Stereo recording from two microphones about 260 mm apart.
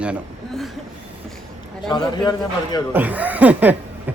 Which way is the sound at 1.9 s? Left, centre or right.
Centre.